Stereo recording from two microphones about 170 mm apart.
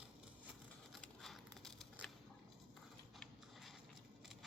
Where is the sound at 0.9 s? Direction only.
Centre (ahead or behind).